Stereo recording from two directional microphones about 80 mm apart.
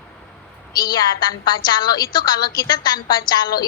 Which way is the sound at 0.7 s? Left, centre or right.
Left.